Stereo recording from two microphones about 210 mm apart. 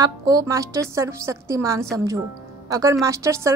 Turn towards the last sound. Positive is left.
turn(degrees=-15)  # may be behind; listen again after turning